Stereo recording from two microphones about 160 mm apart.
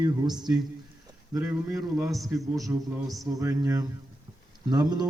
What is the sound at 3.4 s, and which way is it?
A man's voice, 20° right (ahead or behind).